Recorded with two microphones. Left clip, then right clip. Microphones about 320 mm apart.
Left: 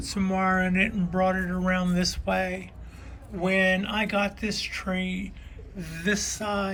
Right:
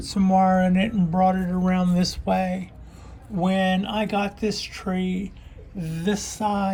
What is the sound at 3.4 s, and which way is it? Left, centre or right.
Speech, centre.